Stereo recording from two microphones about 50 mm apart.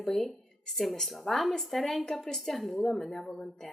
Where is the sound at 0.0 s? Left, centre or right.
Centre.